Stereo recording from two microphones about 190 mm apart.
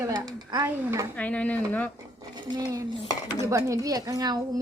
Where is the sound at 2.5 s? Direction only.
20° right (ahead or behind).